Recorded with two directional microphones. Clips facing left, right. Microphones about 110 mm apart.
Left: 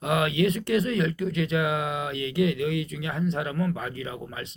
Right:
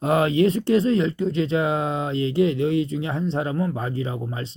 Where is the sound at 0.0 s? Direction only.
35° right (ahead or behind).